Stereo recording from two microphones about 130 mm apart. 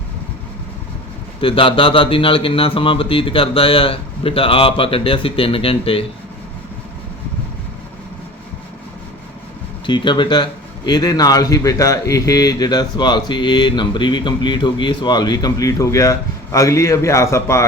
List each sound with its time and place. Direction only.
1.4 s speech: 45° left (ahead or behind)
9.8 s a man's voice: 35° left (ahead or behind); by 17.7 s 20° left (ahead or behind)